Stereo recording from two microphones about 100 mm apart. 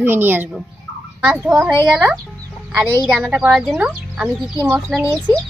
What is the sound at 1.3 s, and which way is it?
Speech, centre (ahead or behind).